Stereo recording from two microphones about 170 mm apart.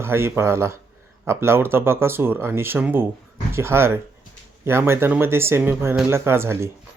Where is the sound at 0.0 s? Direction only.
15° right (ahead or behind).